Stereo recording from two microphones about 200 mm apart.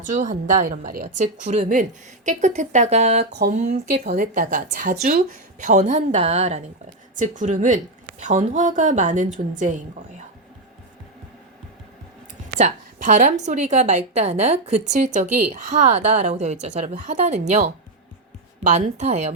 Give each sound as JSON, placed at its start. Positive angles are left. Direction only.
{"t": 0.0, "sound": "a woman's voice", "side_deg": -40}
{"t": 12.5, "sound": "a woman's voice", "side_deg": -35}